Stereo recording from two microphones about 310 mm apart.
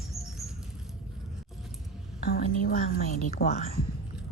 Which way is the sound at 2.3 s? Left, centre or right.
Left.